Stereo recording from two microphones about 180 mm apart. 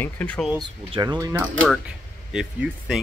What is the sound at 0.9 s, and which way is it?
Speech, 25° right (ahead or behind).